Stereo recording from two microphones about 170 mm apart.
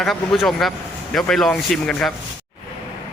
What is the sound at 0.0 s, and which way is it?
Speech, centre (ahead or behind).